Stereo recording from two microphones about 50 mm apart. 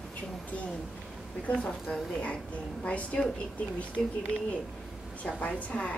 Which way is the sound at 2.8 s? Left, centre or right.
Left.